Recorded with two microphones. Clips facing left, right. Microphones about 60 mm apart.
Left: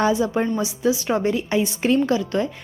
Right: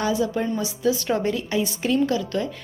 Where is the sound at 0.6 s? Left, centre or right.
Centre.